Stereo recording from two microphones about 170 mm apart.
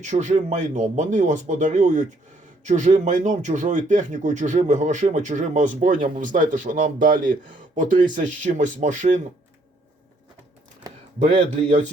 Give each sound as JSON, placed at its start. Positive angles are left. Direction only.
{"t": 0.0, "sound": "speech", "side_deg": -45}
{"t": 11.2, "sound": "a man's voice", "side_deg": -35}